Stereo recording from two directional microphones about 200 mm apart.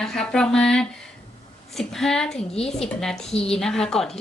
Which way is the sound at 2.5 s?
30° left (ahead or behind).